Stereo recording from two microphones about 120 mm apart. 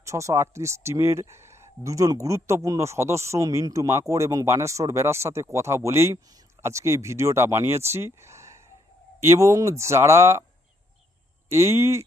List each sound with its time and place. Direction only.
0.0 s speech: 25° right (ahead or behind)
11.4 s speech: 25° right (ahead or behind)